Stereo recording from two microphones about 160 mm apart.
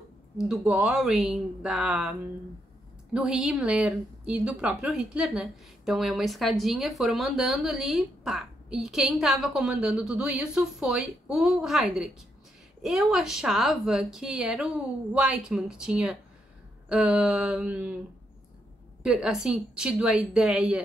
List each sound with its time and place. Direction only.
0.4 s a woman's voice: 5° right (ahead or behind)
16.9 s a sound: 5° right (ahead or behind)
19.0 s a woman's voice: 5° right (ahead or behind)